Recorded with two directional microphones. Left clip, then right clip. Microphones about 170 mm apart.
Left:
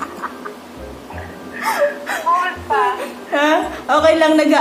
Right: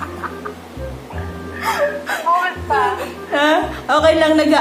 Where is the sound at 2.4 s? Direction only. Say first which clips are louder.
Even; 10° right (ahead or behind).